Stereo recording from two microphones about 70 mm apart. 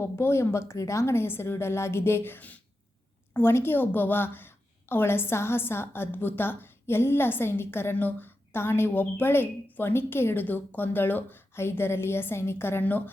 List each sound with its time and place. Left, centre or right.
0.0 s a woman's voice: left